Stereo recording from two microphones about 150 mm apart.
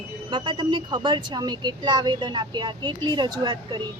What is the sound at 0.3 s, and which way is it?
A woman's voice, 30° right (ahead or behind).